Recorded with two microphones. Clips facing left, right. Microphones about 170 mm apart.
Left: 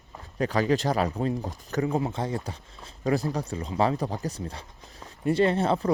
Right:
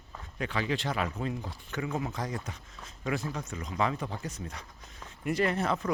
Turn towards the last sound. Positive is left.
turn(degrees=30)  # may be behind; listen again after turning